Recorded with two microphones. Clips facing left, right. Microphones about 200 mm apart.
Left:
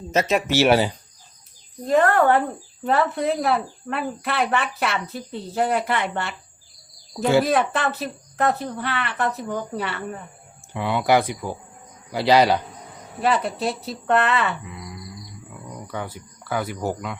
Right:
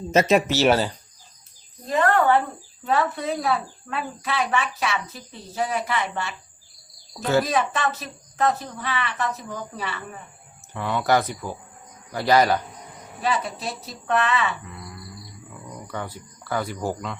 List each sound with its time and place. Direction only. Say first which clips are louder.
0.2 s speech: right 3 dB; 5° right (ahead or behind)
0.5 s speech: left 2 dB; 10° left (ahead or behind)
1.9 s speech: left 2 dB; 55° left (ahead or behind)
7.4 s speech: left 3 dB; 60° left (ahead or behind)
10.8 s speech: left 2 dB; 15° left (ahead or behind)
13.2 s speech: left 4 dB; 60° left (ahead or behind)
14.6 s groan: left 3 dB; 10° left (ahead or behind)
15.7 s a sound: left 1 dB; 5° left (ahead or behind)
16.5 s speech: left 1 dB; 5° left (ahead or behind)